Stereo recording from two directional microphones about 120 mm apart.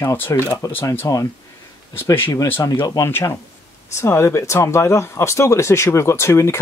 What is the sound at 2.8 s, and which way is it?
Speech, 30° left (ahead or behind).